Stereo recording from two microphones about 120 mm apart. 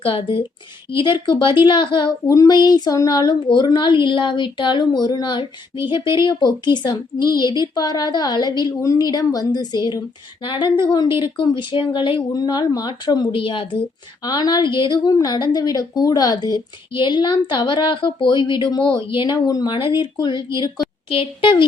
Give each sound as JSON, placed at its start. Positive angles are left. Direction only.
{"t": 0.0, "sound": "speech", "side_deg": 45}
{"t": 12.3, "sound": "speech", "side_deg": 35}
{"t": 14.3, "sound": "speech", "side_deg": 35}